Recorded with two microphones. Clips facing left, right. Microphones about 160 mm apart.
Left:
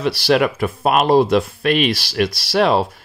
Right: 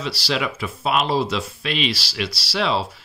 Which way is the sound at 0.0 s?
55° left (ahead or behind).